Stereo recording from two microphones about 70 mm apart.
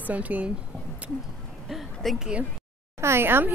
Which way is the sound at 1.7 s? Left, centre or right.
Centre.